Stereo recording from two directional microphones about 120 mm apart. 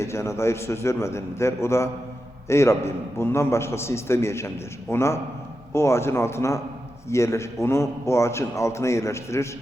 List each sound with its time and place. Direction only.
0.0 s a man's voice: 25° left (ahead or behind)